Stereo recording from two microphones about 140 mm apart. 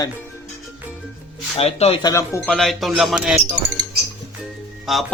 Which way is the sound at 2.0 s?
25° left (ahead or behind).